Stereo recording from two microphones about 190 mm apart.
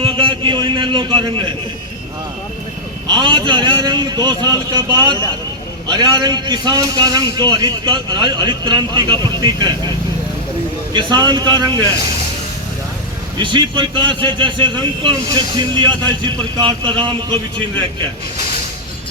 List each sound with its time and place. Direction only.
0.0 s a sound: 25° right (ahead or behind)
3.1 s a man's voice: 25° right (ahead or behind)
10.9 s a man's voice: 20° right (ahead or behind)
13.4 s a man's voice: 25° right (ahead or behind)